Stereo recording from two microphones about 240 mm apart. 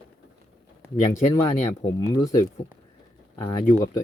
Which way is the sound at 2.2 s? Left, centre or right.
Centre.